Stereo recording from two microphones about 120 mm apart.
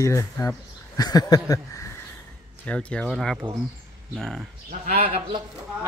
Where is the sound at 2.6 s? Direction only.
10° left (ahead or behind).